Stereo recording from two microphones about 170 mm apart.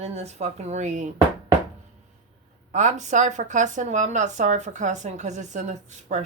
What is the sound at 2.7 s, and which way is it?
A woman's voice, 45° right (ahead or behind).